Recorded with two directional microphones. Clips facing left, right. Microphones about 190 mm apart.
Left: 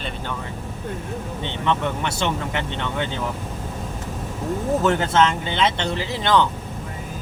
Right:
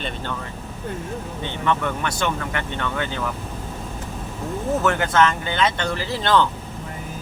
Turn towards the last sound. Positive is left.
turn(degrees=15)  # may be behind; listen again after turning